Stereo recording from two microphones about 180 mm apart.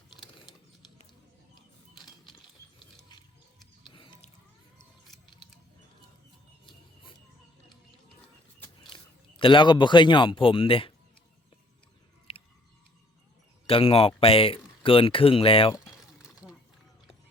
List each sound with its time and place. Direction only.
2.3 s a sound: 25° left (ahead or behind)
3.8 s music: 25° left (ahead or behind)
9.4 s speech: 30° left (ahead or behind)
12.3 s chewing: 30° left (ahead or behind)
13.7 s speech: 30° left (ahead or behind)
16.2 s a sound: 5° right (ahead or behind)